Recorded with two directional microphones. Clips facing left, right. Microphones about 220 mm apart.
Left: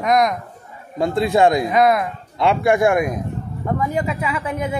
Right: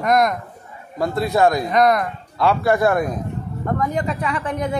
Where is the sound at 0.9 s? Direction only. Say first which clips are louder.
Left 2 dB; 25° left (ahead or behind).